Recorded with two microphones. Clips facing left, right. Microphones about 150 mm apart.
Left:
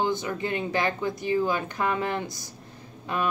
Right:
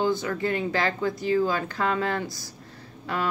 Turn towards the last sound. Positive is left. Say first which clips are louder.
# even
turn(degrees=20)  # may be behind; listen again after turning